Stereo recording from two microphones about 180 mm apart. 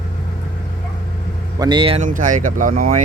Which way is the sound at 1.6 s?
25° right (ahead or behind).